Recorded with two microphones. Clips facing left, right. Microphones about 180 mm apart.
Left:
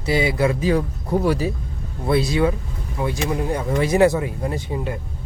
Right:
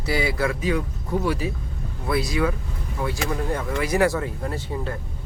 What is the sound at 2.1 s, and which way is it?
Speech, 25° left (ahead or behind).